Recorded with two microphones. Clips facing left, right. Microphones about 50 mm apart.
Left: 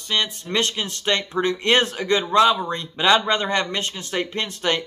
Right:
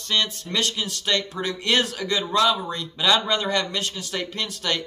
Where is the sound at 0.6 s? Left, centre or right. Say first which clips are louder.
Left 2 dB; left.